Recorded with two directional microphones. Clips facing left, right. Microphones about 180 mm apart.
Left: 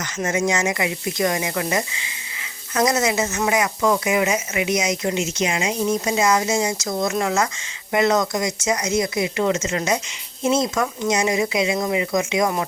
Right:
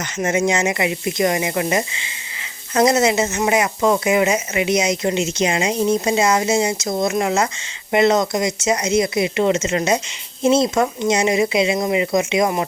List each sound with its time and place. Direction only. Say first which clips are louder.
0.0 s speech: right 3 dB; 20° right (ahead or behind)